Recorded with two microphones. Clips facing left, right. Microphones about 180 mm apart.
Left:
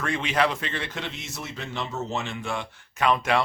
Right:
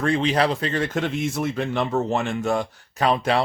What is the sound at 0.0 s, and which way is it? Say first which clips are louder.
Speech: right 5 dB; 35° right (ahead or behind).